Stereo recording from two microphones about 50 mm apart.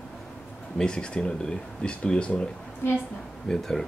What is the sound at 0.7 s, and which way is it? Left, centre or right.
Speech, centre.